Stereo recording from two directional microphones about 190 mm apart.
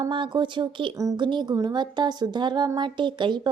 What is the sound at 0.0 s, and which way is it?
Speech, 25° right (ahead or behind).